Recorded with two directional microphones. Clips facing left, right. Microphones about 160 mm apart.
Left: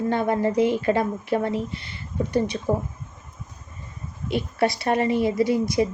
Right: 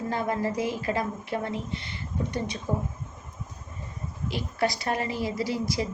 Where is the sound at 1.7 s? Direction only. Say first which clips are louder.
Even; 25° right (ahead or behind).